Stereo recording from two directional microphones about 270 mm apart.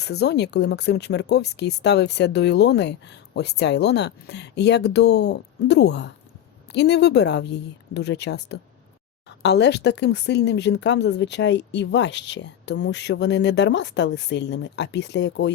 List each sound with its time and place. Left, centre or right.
0.0 s speech: left